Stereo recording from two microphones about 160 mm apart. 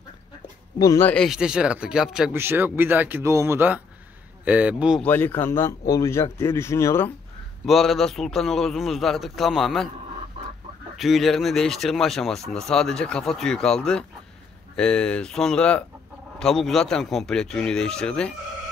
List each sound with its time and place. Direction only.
0.7 s speech: 25° left (ahead or behind)
1.0 s a man's voice: 5° left (ahead or behind)
5.0 s speech: 10° left (ahead or behind)
7.6 s a man's voice: centre (ahead or behind)
11.0 s a man's voice: centre (ahead or behind)